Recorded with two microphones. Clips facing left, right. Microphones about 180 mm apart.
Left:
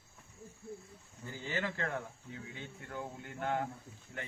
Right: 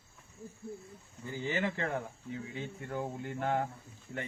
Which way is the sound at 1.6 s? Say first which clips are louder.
Right 2 dB; 25° right (ahead or behind).